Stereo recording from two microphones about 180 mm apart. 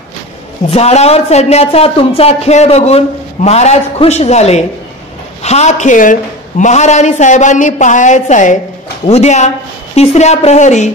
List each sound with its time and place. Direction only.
0.7 s a woman's voice: 35° left (ahead or behind)